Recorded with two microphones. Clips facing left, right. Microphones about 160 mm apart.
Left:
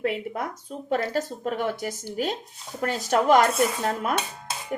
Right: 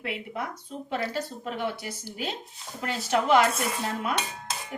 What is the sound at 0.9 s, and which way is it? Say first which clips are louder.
A woman's voice: left 5 dB; 45° left (ahead or behind).